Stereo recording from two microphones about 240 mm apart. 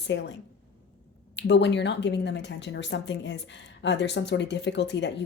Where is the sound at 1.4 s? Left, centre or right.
Left.